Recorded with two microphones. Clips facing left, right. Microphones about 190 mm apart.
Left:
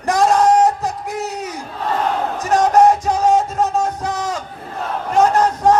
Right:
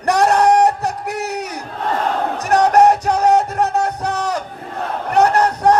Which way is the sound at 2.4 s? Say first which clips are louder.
Even; 65° right (ahead or behind).